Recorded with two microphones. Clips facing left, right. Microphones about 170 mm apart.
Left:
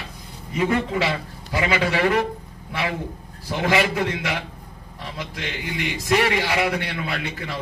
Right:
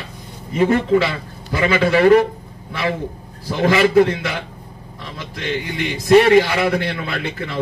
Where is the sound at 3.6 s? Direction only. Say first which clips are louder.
Right 8 dB; 35° right (ahead or behind).